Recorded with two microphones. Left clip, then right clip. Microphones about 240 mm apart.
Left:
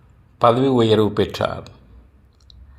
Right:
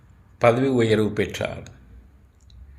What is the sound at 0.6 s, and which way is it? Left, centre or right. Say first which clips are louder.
Speech: left 4 dB; centre.